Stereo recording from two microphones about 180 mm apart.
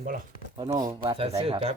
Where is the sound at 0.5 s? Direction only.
25° right (ahead or behind).